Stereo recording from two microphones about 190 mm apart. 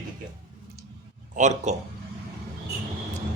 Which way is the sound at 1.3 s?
40° right (ahead or behind).